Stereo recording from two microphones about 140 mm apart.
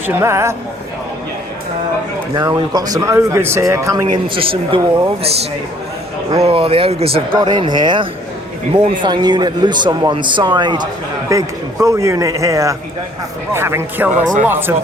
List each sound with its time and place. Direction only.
0.2 s speech: 20° right (ahead or behind)
2.3 s speech: 25° right (ahead or behind)
4.1 s a man's voice: 35° right (ahead or behind)
6.3 s a man's voice: 45° right (ahead or behind)
7.3 s a man's voice: 30° right (ahead or behind)
11.3 s speech: 20° right (ahead or behind)